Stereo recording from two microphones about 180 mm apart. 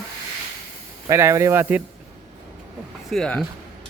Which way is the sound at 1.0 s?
15° right (ahead or behind).